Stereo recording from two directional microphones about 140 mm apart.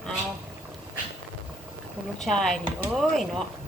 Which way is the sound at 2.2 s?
5° left (ahead or behind).